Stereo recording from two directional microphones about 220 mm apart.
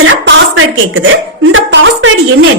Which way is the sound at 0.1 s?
60° right (ahead or behind).